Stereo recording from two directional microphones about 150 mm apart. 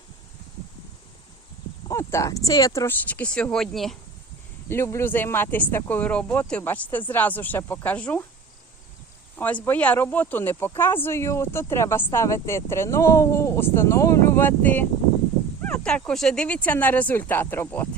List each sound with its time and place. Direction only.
1.9 s speech: 20° left (ahead or behind); by 3.9 s centre (ahead or behind)
4.7 s speech: 15° left (ahead or behind)
9.3 s speech: 10° left (ahead or behind)